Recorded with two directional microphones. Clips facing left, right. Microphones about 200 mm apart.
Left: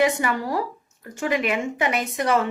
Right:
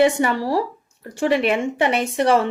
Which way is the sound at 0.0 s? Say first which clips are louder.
Right 4 dB; 30° right (ahead or behind).